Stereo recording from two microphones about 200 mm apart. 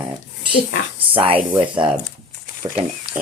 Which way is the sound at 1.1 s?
25° right (ahead or behind).